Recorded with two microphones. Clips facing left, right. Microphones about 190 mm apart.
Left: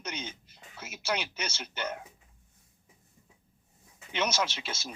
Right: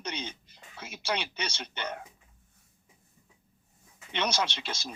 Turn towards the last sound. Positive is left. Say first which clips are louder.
# right 1 dB
turn(degrees=5)  # may be behind; listen again after turning